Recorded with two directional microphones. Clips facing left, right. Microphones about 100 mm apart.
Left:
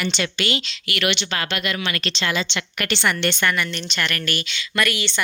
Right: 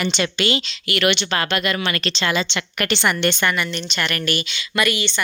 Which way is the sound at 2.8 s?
15° right (ahead or behind).